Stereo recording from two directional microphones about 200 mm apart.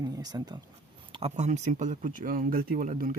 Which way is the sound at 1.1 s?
30° right (ahead or behind).